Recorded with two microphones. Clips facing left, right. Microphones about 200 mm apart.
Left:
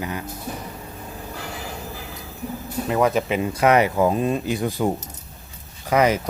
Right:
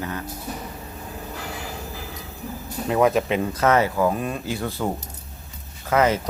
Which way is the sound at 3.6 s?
15° left (ahead or behind).